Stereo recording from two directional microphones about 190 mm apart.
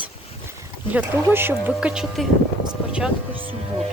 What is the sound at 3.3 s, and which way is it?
Music, 30° right (ahead or behind).